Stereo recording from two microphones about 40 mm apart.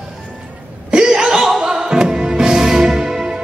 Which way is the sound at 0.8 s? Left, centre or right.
Centre.